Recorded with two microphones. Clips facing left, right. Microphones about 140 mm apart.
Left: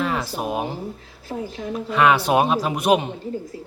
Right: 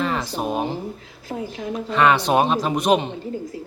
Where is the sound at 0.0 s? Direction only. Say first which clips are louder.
Right 1 dB; 5° left (ahead or behind).